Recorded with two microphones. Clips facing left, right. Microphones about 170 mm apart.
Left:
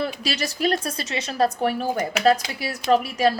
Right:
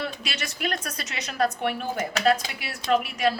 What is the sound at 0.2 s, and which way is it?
A woman's voice, 35° left (ahead or behind).